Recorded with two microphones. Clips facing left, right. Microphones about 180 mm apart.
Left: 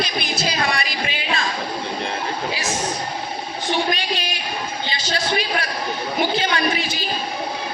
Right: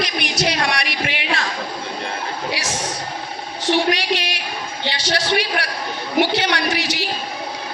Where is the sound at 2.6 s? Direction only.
80° right.